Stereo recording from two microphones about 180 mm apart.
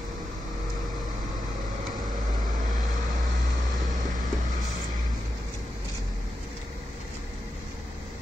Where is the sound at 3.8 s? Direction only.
45° right (ahead or behind).